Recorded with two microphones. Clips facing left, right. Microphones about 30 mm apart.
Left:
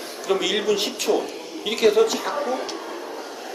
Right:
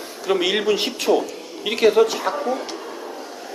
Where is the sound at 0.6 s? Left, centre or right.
Right.